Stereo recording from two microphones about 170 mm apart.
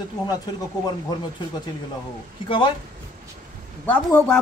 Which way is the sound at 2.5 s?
30° left (ahead or behind).